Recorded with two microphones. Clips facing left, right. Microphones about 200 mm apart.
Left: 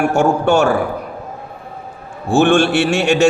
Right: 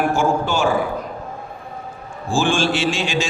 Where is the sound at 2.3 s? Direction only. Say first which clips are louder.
Left 7 dB; 65° left (ahead or behind).